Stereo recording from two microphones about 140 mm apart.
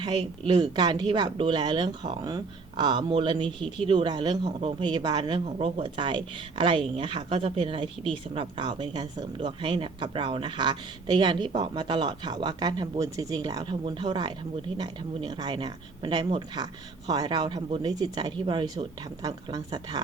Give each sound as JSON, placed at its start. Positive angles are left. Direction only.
{"t": 0.0, "sound": "a woman's voice", "side_deg": -30}